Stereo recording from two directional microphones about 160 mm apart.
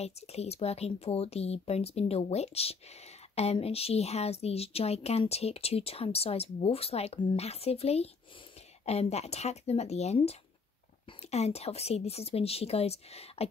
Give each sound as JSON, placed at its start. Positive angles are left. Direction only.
{"t": 0.0, "sound": "speech", "side_deg": 40}